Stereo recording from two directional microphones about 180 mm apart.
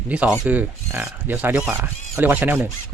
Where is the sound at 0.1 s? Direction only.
5° right (ahead or behind).